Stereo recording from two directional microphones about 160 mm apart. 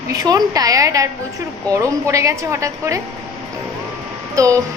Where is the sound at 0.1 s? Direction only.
25° right (ahead or behind).